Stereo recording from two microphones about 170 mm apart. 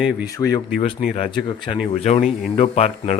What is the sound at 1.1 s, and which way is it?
Speech, 30° left (ahead or behind).